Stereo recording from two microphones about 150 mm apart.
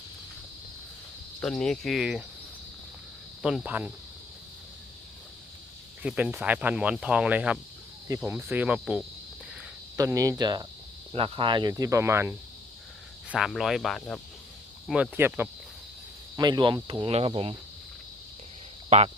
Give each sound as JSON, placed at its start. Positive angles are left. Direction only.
{"t": 1.4, "sound": "speech", "side_deg": 5}
{"t": 3.4, "sound": "speech", "side_deg": -5}
{"t": 6.0, "sound": "speech", "side_deg": -5}
{"t": 10.0, "sound": "speech", "side_deg": -20}
{"t": 11.1, "sound": "speech", "side_deg": -35}
{"t": 13.3, "sound": "speech", "side_deg": 0}
{"t": 16.4, "sound": "speech", "side_deg": -30}
{"t": 18.9, "sound": "speech", "side_deg": -45}